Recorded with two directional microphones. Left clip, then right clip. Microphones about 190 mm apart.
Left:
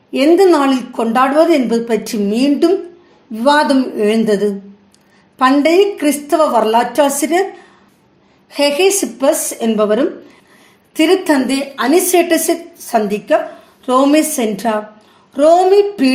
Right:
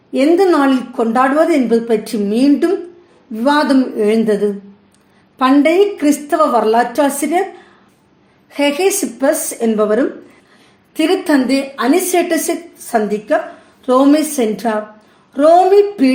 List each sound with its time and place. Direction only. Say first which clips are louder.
0.1 s a woman's voice: left 2 dB; 25° left (ahead or behind)
8.4 s a woman's voice: left 2 dB; 25° left (ahead or behind)